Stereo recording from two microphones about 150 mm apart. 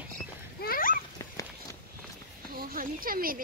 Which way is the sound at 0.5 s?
75° left (ahead or behind).